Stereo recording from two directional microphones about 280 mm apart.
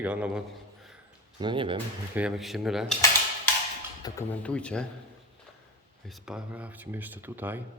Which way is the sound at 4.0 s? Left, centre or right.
Centre.